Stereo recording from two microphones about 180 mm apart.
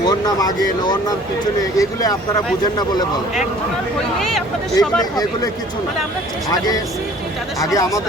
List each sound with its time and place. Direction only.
0.0 s speech: 20° left (ahead or behind)
4.2 s speech: centre (ahead or behind)
4.8 s speech: 20° left (ahead or behind)
7.6 s speech: 20° left (ahead or behind)